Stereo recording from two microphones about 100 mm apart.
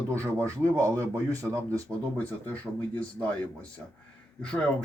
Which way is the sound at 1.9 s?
15° left (ahead or behind).